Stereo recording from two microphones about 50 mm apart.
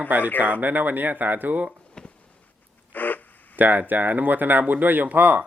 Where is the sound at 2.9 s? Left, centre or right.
Left.